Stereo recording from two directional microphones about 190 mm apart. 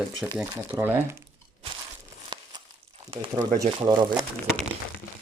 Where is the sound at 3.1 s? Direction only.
25° right (ahead or behind).